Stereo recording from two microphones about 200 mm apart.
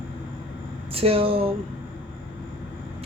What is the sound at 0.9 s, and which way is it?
Speech, 30° right (ahead or behind).